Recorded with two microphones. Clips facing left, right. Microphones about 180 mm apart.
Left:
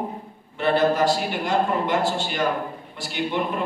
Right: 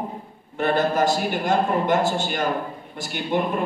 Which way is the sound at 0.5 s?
45° right (ahead or behind).